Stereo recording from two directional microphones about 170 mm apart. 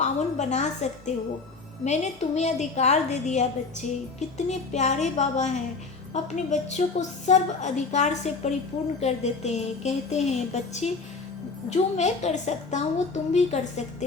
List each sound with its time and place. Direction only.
0.0 s a woman's voice: 45° left (ahead or behind)